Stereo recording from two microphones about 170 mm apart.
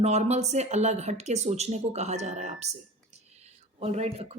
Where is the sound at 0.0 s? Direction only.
40° right (ahead or behind).